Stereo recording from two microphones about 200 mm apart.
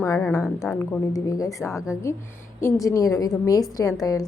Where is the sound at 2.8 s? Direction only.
15° left (ahead or behind).